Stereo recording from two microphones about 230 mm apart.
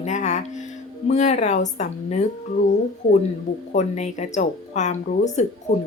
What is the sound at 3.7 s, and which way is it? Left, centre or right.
A woman's voice, left.